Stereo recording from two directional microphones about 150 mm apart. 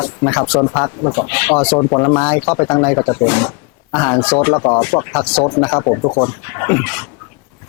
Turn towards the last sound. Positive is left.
turn(degrees=15)  # may be behind; listen again after turning